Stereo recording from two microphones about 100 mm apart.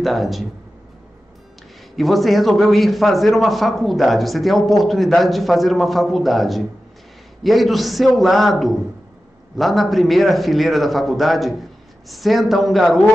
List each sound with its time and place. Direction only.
0.0 s a man's voice: centre (ahead or behind)
2.0 s a man's voice: centre (ahead or behind)